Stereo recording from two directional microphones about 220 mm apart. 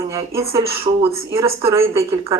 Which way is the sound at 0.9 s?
30° right (ahead or behind).